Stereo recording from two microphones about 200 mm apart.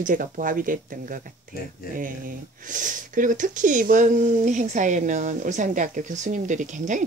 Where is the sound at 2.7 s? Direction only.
40° right (ahead or behind).